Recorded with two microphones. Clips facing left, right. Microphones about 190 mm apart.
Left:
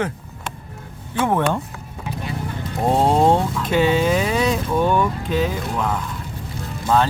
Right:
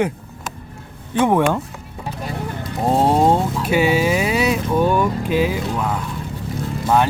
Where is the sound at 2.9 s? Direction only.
5° right (ahead or behind).